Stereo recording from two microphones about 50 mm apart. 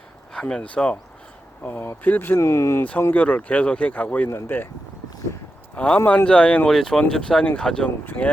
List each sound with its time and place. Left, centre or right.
0.3 s speech: centre
1.6 s speech: left
2.4 s speech: left
3.1 s speech: left
4.4 s speech: left
5.7 s speech: left
6.7 s speech: centre
8.0 s speech: left